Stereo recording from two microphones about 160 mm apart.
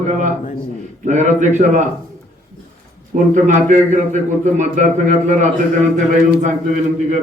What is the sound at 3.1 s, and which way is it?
A man's voice, 55° right (ahead or behind).